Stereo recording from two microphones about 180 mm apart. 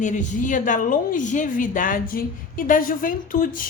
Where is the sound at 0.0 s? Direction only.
45° left (ahead or behind).